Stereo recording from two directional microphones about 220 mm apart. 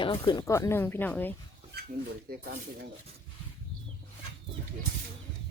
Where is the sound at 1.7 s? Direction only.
45° right (ahead or behind).